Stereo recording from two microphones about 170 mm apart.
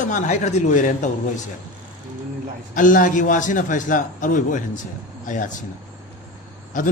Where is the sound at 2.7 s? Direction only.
50° left (ahead or behind).